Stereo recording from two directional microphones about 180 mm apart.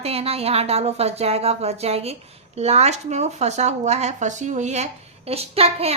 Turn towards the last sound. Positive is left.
turn(degrees=-35)  # may be behind; listen again after turning